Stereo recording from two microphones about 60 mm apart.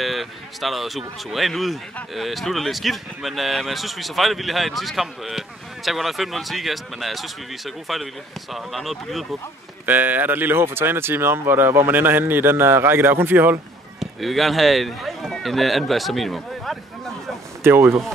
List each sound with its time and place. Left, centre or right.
0.0 s speech: centre
9.8 s speech: right
13.9 s speech: centre
17.6 s speech: right